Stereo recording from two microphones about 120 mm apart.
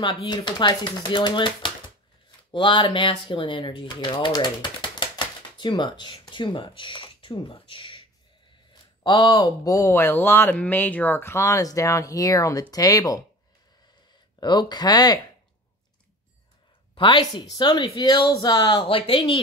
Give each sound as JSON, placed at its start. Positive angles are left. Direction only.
{"t": 0.0, "sound": "speech", "side_deg": 45}
{"t": 9.0, "sound": "speech", "side_deg": 35}
{"t": 14.4, "sound": "speech", "side_deg": 35}
{"t": 16.9, "sound": "speech", "side_deg": 40}